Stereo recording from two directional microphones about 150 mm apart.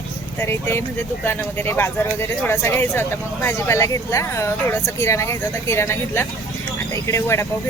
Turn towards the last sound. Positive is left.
turn(degrees=20)  # may be behind; listen again after turning